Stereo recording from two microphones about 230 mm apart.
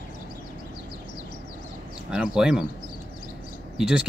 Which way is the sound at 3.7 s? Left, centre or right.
Centre.